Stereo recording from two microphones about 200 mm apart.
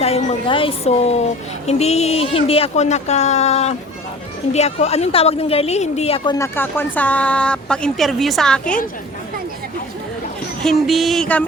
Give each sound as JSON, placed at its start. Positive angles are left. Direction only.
{"t": 0.0, "sound": "speech", "side_deg": 30}
{"t": 6.4, "sound": "speech", "side_deg": 10}
{"t": 10.6, "sound": "speech", "side_deg": 0}